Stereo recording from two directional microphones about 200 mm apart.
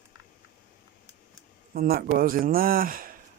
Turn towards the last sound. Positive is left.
turn(degrees=-45)  # may be behind; listen again after turning